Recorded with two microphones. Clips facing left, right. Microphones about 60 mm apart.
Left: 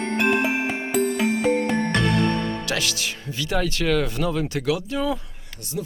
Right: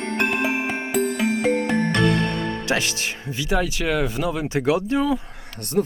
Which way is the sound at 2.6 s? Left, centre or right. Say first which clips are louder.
Right 3 dB; right.